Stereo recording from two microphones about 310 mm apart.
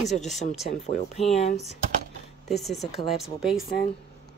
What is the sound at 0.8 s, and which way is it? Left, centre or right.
Speech, left.